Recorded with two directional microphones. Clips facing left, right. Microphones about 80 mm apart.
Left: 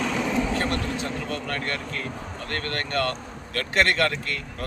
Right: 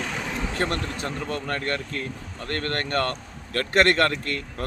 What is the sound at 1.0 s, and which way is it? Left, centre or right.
Speech, right.